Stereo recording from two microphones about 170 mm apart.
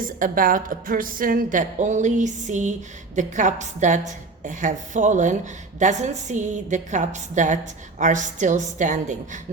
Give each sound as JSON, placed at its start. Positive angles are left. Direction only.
{"t": 0.0, "sound": "a woman's voice", "side_deg": -55}